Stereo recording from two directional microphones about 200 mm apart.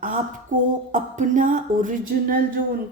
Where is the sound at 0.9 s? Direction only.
40° right (ahead or behind).